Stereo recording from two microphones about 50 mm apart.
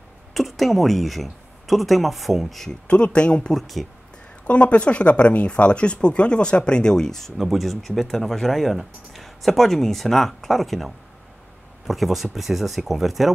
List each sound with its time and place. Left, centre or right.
0.3 s speech: centre
2.9 s speech: left
3.5 s speech: centre
4.5 s speech: left; by 10.9 s centre
11.9 s speech: centre